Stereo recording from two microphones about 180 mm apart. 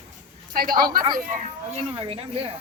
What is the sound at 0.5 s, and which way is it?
Speech, 55° right (ahead or behind).